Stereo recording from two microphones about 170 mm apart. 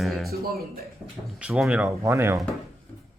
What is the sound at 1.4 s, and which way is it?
Speech, 5° right (ahead or behind).